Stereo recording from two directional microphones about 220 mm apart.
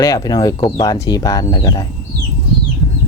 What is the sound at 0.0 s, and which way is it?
Speech, 15° left (ahead or behind).